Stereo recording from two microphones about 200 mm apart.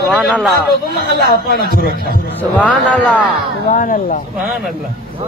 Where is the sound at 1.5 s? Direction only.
50° left (ahead or behind).